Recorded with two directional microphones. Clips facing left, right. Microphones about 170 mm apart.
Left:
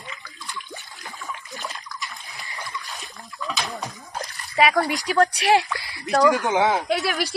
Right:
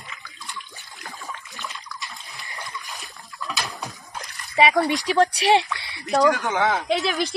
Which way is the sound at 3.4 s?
Centre (ahead or behind).